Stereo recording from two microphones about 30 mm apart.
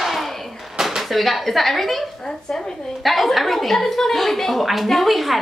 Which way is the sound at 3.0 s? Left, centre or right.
Centre.